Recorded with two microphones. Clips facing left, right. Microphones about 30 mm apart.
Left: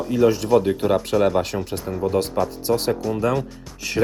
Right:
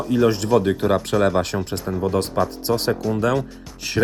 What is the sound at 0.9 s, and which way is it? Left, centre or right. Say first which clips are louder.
Speech: even; centre.